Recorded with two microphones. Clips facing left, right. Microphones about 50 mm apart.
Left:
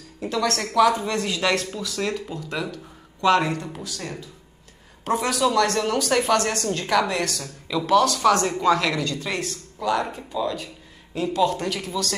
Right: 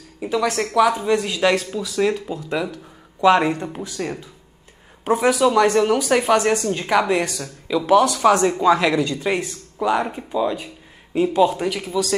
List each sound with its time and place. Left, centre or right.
0.2 s speech: centre
5.0 s speech: centre